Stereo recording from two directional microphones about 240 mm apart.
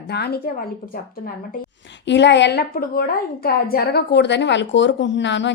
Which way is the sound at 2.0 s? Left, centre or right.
Left.